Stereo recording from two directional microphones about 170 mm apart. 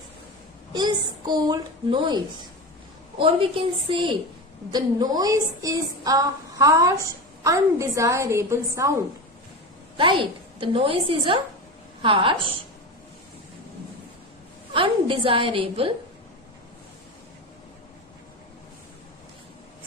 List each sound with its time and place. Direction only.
0.7 s a woman's voice: 25° right (ahead or behind)
10.0 s a woman's voice: 30° right (ahead or behind)
14.7 s a woman's voice: 30° right (ahead or behind)